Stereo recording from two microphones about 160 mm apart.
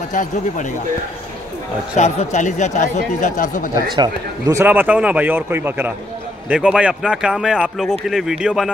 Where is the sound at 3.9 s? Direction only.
25° right (ahead or behind); by 8.6 s 5° right (ahead or behind).